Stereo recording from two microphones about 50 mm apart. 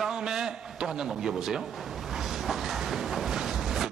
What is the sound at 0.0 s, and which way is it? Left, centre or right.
A man's voice, centre.